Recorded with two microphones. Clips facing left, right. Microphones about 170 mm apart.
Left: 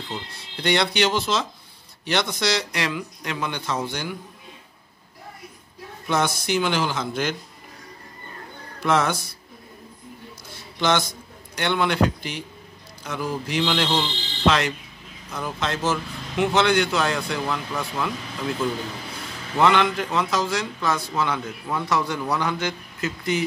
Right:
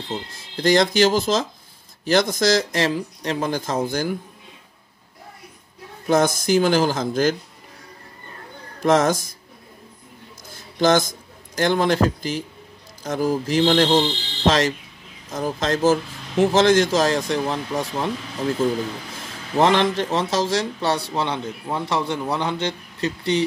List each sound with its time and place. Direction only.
0.1 s a man's voice: 40° right (ahead or behind)
6.0 s a man's voice: 45° right (ahead or behind)
8.8 s a man's voice: 40° right (ahead or behind)
10.8 s a man's voice: 45° right (ahead or behind)
19.5 s a man's voice: 35° right (ahead or behind)